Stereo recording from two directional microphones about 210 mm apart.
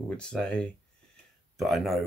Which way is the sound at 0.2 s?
5° left (ahead or behind).